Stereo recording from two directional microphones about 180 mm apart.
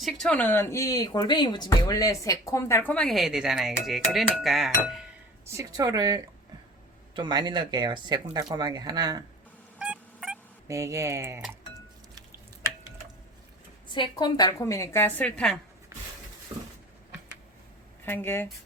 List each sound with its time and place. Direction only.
0.0 s speech: 5° left (ahead or behind)
5.5 s speech: 15° right (ahead or behind)
9.7 s cat: 5° right (ahead or behind)
10.7 s speech: 15° right (ahead or behind)
13.9 s speech: 25° left (ahead or behind); by 15.5 s 5° left (ahead or behind)
16.5 s a sound: 30° right (ahead or behind)
18.0 s speech: 10° left (ahead or behind)